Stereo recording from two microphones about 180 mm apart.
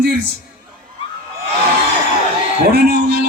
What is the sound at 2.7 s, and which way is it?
Speech, 60° right (ahead or behind).